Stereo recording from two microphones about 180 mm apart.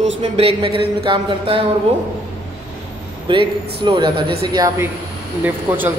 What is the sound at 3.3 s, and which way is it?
A woman's voice, 30° right (ahead or behind).